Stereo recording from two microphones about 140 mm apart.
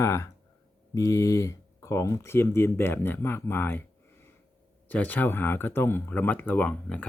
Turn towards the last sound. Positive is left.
turn(degrees=10)  # may be behind; listen again after turning